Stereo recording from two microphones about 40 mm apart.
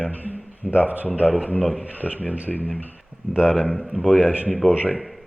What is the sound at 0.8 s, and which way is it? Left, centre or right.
Speech, right.